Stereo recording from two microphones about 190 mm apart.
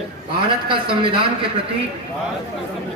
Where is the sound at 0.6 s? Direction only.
25° right (ahead or behind).